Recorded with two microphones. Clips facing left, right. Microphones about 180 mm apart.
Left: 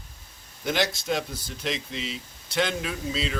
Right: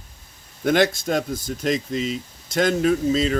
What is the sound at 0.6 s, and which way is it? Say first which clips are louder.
Speech: right 8 dB; 55° right (ahead or behind).